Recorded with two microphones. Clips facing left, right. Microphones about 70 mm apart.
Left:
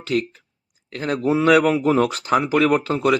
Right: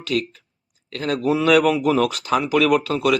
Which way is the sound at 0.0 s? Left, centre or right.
Left.